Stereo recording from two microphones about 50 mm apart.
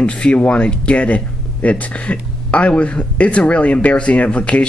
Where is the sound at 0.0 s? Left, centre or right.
Left.